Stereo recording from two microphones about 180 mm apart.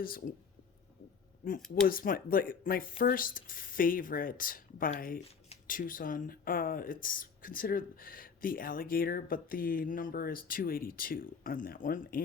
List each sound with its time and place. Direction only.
0.0 s speech: 55° left (ahead or behind)
1.7 s speech: 55° left (ahead or behind)